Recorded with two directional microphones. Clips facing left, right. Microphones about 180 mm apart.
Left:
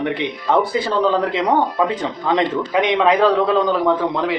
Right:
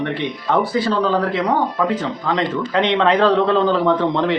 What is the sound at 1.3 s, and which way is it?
Speech, 20° left (ahead or behind).